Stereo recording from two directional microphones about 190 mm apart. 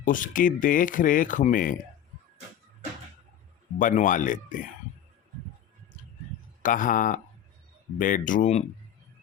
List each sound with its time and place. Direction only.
0.0 s speech: 45° left (ahead or behind)
3.8 s speech: 45° left (ahead or behind)
6.6 s speech: 45° left (ahead or behind)